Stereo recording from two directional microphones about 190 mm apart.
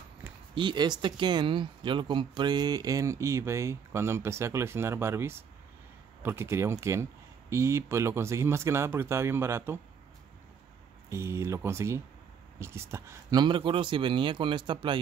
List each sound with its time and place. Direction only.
0.6 s speech: 25° right (ahead or behind)
11.1 s speech: 15° right (ahead or behind)